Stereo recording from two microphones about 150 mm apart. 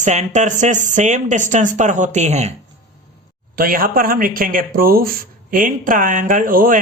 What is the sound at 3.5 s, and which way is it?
Speech, 70° right (ahead or behind).